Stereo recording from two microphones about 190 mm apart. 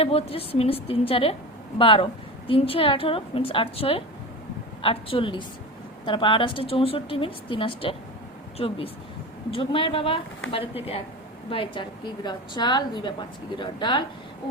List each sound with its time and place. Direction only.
0.0 s a woman's voice: 30° left (ahead or behind)
11.5 s a woman's voice: 25° left (ahead or behind)